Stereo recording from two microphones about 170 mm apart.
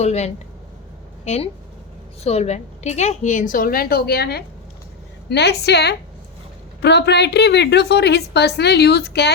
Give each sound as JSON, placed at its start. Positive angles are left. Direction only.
{"t": 0.0, "sound": "a woman's voice", "side_deg": 40}